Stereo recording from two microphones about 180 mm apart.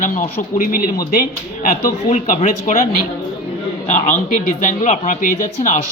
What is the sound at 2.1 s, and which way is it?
Speech, 40° left (ahead or behind).